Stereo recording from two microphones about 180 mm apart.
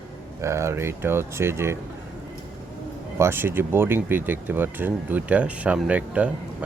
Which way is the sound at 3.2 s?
10° right (ahead or behind).